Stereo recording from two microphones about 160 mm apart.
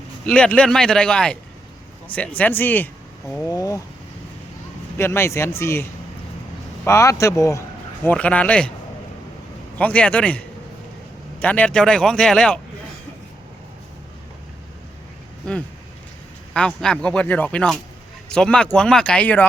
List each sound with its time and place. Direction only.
0.3 s speech: 5° left (ahead or behind)
4.9 s speech: 15° left (ahead or behind)
6.8 s speech: 20° left (ahead or behind)
8.0 s speech: 10° left (ahead or behind)
9.7 s speech: 10° left (ahead or behind)
15.4 s speech: 5° left (ahead or behind)